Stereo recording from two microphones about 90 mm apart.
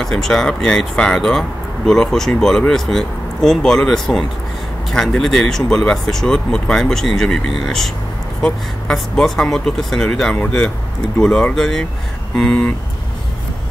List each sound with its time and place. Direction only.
0.0 s speech: 5° left (ahead or behind)
11.1 s speech: 15° left (ahead or behind)
11.5 s speech: 5° left (ahead or behind)